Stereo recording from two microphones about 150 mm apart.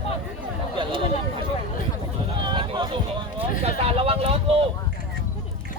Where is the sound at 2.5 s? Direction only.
30° right (ahead or behind).